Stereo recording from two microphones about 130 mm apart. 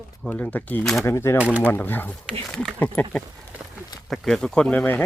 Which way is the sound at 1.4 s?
10° right (ahead or behind).